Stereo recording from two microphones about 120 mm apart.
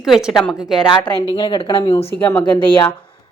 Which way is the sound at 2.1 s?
15° left (ahead or behind).